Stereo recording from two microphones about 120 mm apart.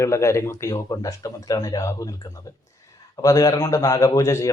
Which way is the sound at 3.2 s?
30° left (ahead or behind).